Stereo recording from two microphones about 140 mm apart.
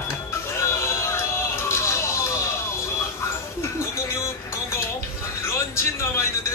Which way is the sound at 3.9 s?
20° left (ahead or behind).